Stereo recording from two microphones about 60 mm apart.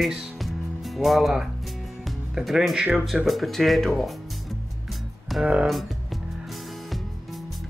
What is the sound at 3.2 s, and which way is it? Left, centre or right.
Speech, centre.